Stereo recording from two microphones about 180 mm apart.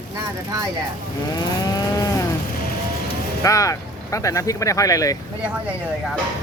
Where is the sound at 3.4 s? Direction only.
20° left (ahead or behind).